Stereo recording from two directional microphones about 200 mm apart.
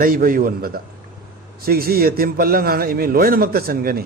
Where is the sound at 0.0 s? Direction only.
45° right (ahead or behind).